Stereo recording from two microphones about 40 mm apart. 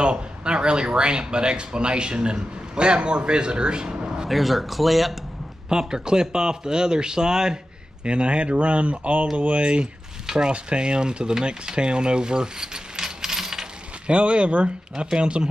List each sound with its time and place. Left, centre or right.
0.0 s speech: right
4.3 s speech: centre
5.7 s speech: centre
8.0 s speech: right
10.2 s a sound: centre
10.5 s speech: right
14.0 s speech: right